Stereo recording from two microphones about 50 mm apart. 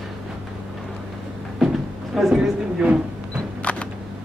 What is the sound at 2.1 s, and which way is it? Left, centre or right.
Speech, centre.